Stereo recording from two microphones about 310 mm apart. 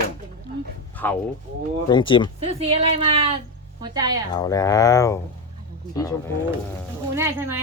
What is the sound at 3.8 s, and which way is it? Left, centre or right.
Female singing, centre.